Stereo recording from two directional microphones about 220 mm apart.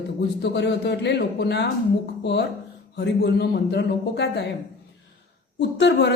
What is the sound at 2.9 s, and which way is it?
Speech, 50° left (ahead or behind).